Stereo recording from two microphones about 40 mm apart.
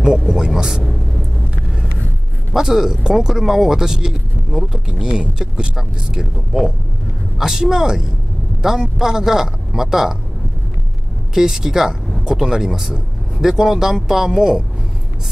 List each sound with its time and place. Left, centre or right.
0.0 s speech: centre
2.5 s speech: centre
5.8 s speech: centre
11.3 s speech: centre